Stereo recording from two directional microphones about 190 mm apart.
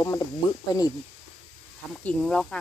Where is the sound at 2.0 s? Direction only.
5° left (ahead or behind).